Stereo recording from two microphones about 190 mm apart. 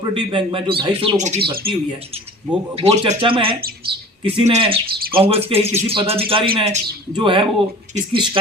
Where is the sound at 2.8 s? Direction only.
25° right (ahead or behind).